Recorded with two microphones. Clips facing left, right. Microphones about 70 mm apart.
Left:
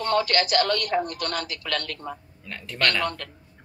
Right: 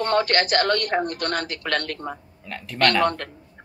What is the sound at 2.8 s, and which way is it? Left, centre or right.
Speech, right.